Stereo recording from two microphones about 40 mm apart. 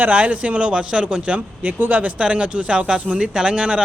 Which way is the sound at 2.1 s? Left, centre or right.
Right.